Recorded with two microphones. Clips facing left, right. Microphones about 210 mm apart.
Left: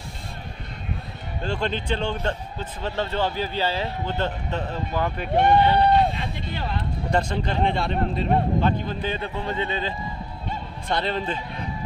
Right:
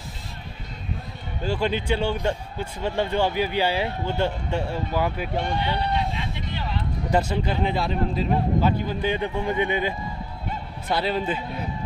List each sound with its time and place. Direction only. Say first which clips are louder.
1.4 s a man's voice: right 2 dB; 10° right (ahead or behind)
5.3 s speech: left 8 dB; 60° left (ahead or behind)
7.1 s a man's voice: right 1 dB; 5° right (ahead or behind)